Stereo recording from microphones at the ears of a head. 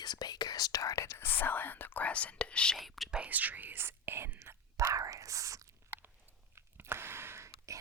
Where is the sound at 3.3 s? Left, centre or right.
Right.